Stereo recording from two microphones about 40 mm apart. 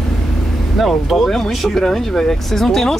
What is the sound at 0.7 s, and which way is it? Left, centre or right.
Speech, centre.